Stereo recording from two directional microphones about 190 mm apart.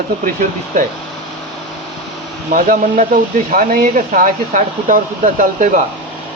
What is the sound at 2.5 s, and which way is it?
Speech, 45° right (ahead or behind).